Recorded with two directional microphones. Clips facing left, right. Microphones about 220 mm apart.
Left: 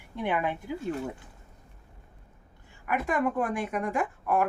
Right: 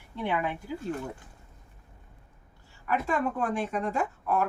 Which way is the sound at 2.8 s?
15° left (ahead or behind).